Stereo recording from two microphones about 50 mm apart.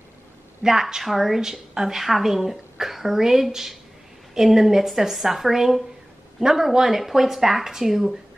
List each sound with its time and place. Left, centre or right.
0.6 s a woman's voice: centre